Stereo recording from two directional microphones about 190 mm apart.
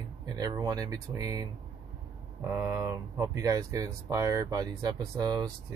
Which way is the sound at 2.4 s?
15° right (ahead or behind).